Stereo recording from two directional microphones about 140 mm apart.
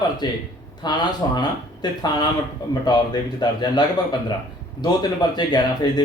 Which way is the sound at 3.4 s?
30° left (ahead or behind).